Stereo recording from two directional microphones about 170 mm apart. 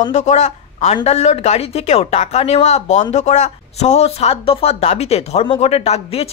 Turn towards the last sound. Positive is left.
turn(degrees=35)  # may be behind; listen again after turning